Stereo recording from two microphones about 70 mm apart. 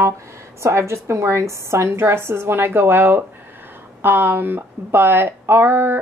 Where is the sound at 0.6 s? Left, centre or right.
Right.